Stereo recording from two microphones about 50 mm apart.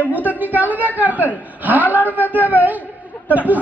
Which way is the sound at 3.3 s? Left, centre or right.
Right.